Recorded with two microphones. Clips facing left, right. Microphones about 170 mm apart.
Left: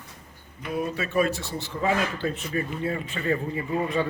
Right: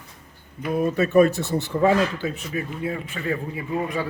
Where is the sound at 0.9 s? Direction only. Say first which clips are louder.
Right 9 dB; 45° right (ahead or behind).